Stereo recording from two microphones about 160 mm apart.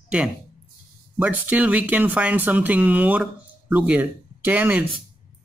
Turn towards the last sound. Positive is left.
turn(degrees=-10)  # may be behind; listen again after turning